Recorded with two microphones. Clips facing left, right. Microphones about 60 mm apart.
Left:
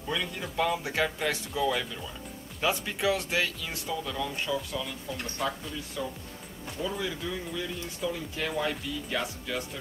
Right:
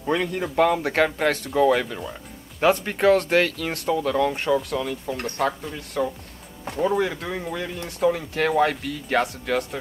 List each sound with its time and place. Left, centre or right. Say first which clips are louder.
0.0 s speech: right 9 dB; right